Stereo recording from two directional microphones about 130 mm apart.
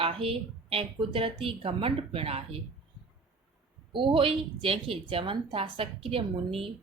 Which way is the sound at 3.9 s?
40° right (ahead or behind).